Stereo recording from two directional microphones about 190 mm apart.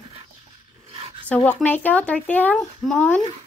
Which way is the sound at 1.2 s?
5° left (ahead or behind).